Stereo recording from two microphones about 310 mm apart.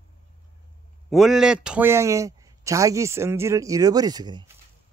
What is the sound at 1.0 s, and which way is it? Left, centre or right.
Speech, centre.